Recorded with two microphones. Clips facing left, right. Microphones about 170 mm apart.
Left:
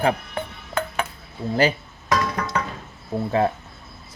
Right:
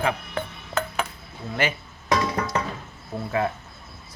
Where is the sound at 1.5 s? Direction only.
35° left (ahead or behind).